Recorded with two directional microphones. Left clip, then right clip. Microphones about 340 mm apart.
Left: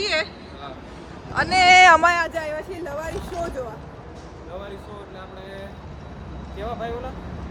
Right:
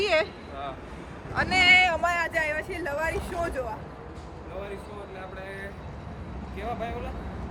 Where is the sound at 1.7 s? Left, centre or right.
Left.